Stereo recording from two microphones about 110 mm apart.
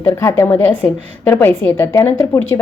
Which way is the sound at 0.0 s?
25° left (ahead or behind).